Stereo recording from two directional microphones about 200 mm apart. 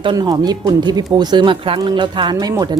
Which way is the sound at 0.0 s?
20° right (ahead or behind).